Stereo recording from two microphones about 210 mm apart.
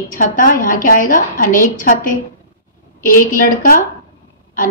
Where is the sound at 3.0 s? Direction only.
40° left (ahead or behind).